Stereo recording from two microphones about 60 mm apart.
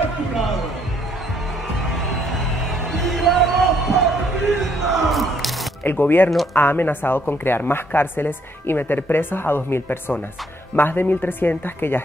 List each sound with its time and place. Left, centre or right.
2.1 s music: centre
4.5 s a sound: centre
5.9 s speech: left